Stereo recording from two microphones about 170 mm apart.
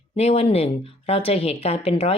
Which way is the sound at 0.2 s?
35° left (ahead or behind).